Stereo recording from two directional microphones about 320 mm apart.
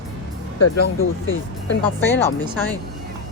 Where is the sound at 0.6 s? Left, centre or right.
Left.